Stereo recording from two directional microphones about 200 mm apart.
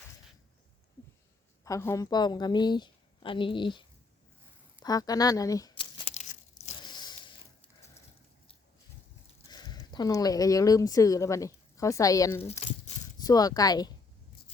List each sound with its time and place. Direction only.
1.6 s a woman's voice: 15° left (ahead or behind)
4.8 s crumpling: 20° left (ahead or behind)
6.6 s a sound: 25° left (ahead or behind)
9.5 s speech: 20° left (ahead or behind)
12.4 s crumpling: 30° left (ahead or behind)
13.1 s a woman's voice: 20° left (ahead or behind)